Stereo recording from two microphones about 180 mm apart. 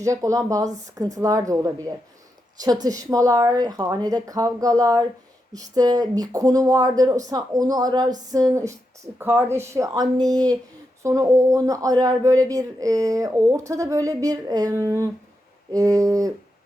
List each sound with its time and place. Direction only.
0.0 s speech: 15° right (ahead or behind)